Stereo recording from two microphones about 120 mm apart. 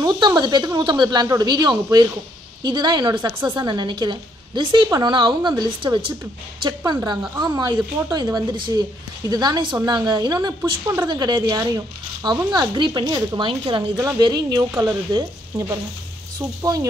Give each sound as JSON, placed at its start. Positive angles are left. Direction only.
{"t": 0.0, "sound": "speech", "side_deg": -35}
{"t": 7.1, "sound": "speech", "side_deg": -35}
{"t": 13.9, "sound": "speech", "side_deg": -30}